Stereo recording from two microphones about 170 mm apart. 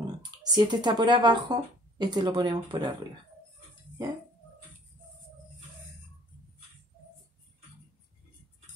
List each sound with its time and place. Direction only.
0.0 s speech: 25° right (ahead or behind)